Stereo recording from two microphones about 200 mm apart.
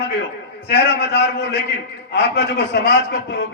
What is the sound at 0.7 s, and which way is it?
A man's voice, 60° left (ahead or behind).